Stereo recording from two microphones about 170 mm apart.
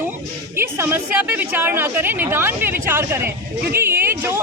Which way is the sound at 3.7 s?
15° right (ahead or behind).